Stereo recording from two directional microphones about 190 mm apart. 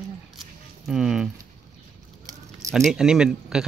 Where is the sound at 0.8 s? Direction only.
5° right (ahead or behind).